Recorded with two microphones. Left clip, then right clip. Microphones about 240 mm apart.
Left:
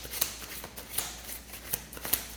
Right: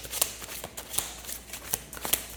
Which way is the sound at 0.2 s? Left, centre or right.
Right.